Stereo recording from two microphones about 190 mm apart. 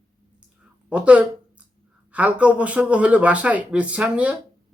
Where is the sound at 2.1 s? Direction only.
5° right (ahead or behind).